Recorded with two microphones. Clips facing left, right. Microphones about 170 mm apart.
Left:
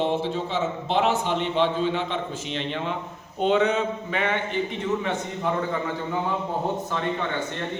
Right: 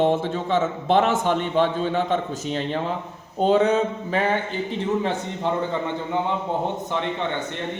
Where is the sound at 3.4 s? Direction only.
35° right (ahead or behind).